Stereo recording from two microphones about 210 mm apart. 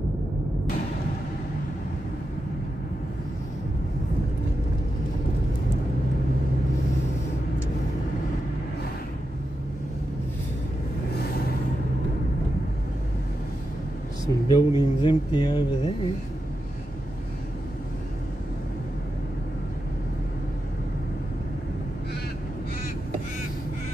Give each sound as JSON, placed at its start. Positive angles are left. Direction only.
{"t": 14.2, "sound": "speech", "side_deg": 20}